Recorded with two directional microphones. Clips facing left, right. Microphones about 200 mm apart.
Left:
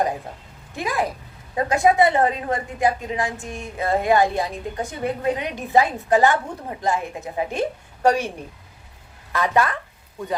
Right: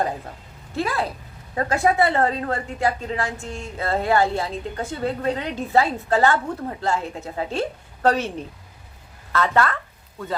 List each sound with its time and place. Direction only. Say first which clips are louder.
0.8 s a woman's voice: even; 15° left (ahead or behind)
9.3 s a woman's voice: even; 15° left (ahead or behind)